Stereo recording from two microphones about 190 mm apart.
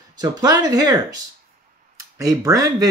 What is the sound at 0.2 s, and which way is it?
Speech, 20° right (ahead or behind).